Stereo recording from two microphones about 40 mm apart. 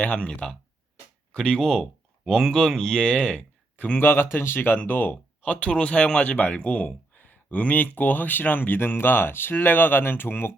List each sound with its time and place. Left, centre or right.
0.0 s speech: left
3.8 s speech: left
4.0 s speech: left
5.5 s speech: left